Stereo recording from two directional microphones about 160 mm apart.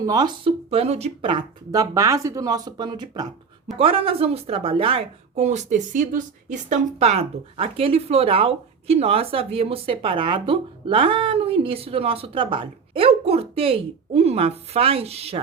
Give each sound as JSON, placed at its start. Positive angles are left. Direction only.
{"t": 0.0, "sound": "speech", "side_deg": -25}
{"t": 7.0, "sound": "speech", "side_deg": -40}